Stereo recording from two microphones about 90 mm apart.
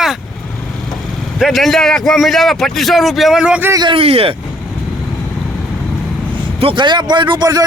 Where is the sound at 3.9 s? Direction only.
90° right.